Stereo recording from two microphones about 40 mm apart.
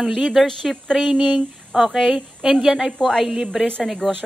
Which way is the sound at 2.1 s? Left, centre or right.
Centre.